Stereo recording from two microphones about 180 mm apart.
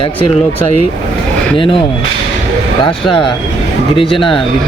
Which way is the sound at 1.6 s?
30° left (ahead or behind).